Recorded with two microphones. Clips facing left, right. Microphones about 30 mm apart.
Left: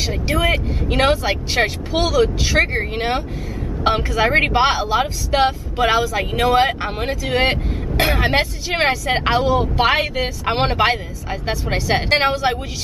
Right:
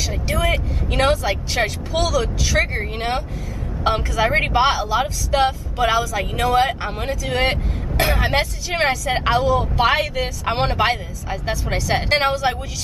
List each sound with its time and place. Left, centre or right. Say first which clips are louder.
0.0 s a woman's voice: left 3 dB; left